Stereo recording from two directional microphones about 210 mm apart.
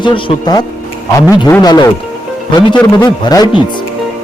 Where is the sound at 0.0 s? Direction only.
25° left (ahead or behind).